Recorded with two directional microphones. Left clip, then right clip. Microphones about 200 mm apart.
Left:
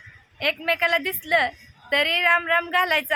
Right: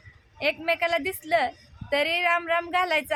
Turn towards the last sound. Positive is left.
turn(degrees=5)  # may be behind; listen again after turning